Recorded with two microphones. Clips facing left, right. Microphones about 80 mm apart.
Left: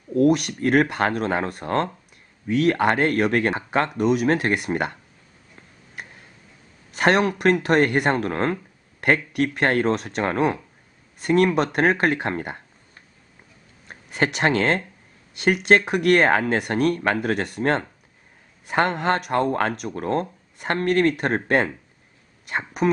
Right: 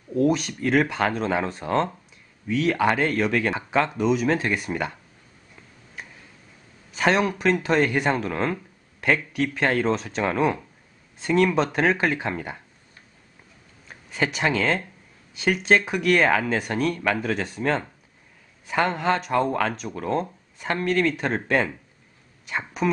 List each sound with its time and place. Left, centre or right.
0.2 s speech: left
6.9 s speech: left
13.8 s speech: left